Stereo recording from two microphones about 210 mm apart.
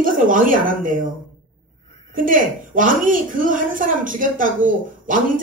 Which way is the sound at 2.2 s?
40° right (ahead or behind).